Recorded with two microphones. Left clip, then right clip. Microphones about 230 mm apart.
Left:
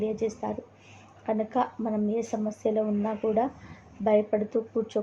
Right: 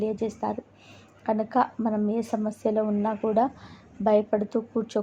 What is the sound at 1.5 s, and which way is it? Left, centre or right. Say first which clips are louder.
Speech: right 3 dB; centre.